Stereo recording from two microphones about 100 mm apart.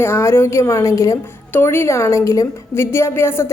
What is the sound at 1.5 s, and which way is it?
A woman's voice, 20° left (ahead or behind).